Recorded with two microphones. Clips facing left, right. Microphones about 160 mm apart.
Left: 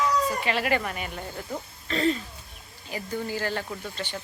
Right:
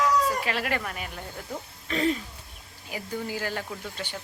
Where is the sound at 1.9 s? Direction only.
10° right (ahead or behind).